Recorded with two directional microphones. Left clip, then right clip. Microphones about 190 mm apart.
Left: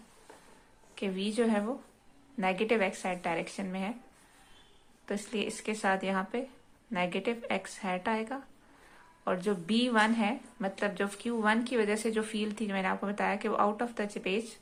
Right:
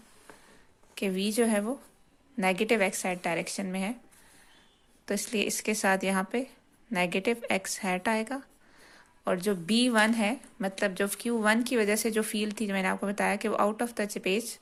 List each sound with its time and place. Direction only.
0.9 s a woman's voice: 45° right (ahead or behind)
5.0 s a woman's voice: 40° right (ahead or behind)